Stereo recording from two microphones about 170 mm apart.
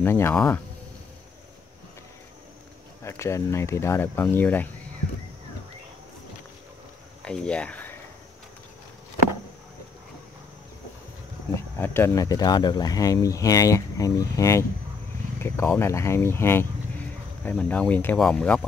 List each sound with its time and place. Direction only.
0.0 s speech: 15° left (ahead or behind)
3.0 s speech: 15° left (ahead or behind)
7.2 s speech: 5° left (ahead or behind)
11.5 s speech: 15° left (ahead or behind)